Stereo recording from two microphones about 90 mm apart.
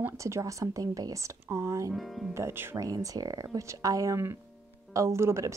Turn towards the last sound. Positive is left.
turn(degrees=-30)  # may be behind; listen again after turning